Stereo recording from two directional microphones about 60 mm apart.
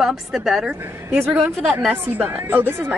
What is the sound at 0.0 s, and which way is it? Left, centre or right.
Speech, centre.